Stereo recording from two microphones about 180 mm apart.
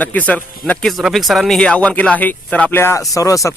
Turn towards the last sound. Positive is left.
turn(degrees=20)  # may be behind; listen again after turning